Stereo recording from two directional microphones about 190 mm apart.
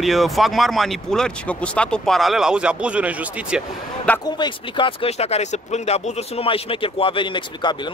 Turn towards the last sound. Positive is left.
turn(degrees=25)  # may be behind; listen again after turning